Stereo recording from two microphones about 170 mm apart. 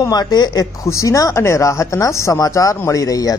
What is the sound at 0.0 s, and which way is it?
Speech, 25° left (ahead or behind).